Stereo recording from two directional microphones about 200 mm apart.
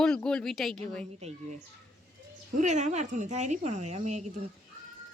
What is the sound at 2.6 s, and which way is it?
Speech, 35° right (ahead or behind).